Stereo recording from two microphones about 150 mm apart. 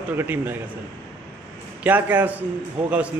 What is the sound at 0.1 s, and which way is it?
Speech, 15° right (ahead or behind).